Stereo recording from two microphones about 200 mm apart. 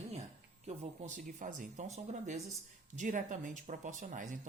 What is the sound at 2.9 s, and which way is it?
Speech, 40° right (ahead or behind).